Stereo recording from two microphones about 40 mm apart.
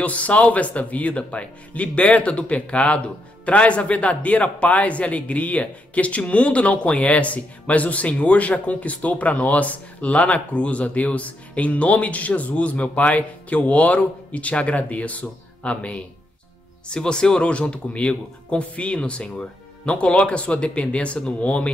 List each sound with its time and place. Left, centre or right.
0.0 s a man's voice: left